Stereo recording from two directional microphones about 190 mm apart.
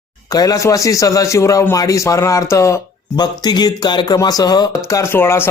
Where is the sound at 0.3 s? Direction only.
20° left (ahead or behind).